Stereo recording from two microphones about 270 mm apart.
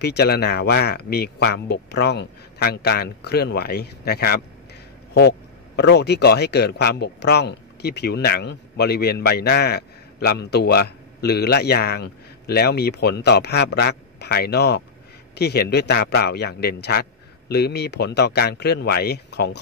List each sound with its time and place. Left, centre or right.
0.0 s speech: left
5.8 s speech: left